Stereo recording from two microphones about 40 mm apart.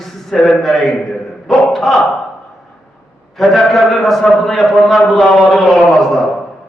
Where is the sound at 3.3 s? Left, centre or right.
Centre.